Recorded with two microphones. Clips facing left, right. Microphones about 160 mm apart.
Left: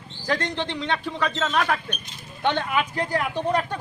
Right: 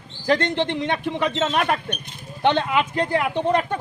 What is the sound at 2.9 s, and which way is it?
Speech, 20° right (ahead or behind).